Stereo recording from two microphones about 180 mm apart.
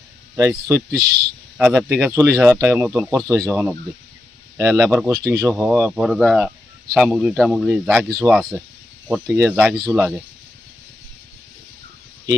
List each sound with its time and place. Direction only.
0.9 s a man's voice: 60° right (ahead or behind)
1.5 s speech: 10° right (ahead or behind)
5.8 s a man's voice: centre (ahead or behind)